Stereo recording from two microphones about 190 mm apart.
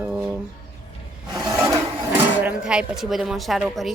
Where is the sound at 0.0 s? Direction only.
5° right (ahead or behind).